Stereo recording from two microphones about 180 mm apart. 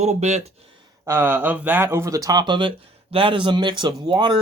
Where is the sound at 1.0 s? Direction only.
15° right (ahead or behind).